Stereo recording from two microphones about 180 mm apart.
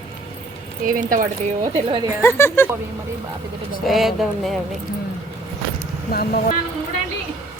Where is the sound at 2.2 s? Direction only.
15° left (ahead or behind).